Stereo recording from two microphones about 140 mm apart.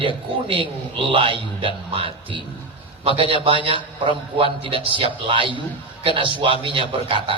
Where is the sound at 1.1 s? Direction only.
40° right (ahead or behind).